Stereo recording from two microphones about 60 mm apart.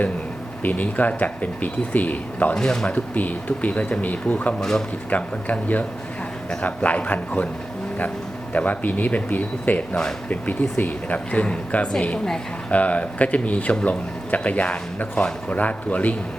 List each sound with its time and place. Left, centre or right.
0.6 s speech: left
2.6 s speech: centre
2.9 s speech: left
8.5 s speech: left